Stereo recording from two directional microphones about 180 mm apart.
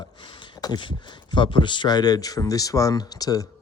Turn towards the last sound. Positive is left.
turn(degrees=20)  # may be behind; listen again after turning